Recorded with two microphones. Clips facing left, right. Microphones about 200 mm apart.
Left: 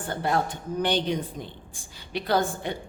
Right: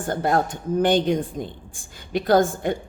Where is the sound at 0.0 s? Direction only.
45° right (ahead or behind).